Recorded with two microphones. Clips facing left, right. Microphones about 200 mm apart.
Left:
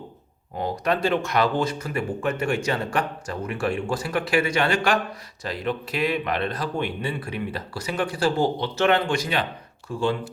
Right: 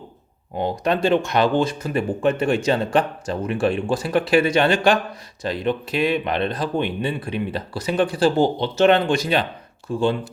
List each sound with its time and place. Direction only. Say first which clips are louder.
0.5 s speech: right 3 dB; 25° right (ahead or behind)